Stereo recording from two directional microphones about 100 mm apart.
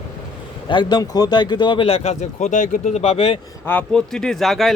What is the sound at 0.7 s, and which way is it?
Speech, 50° left (ahead or behind).